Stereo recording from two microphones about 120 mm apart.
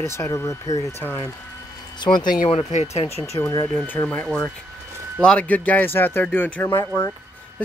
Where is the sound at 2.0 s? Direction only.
40° left (ahead or behind).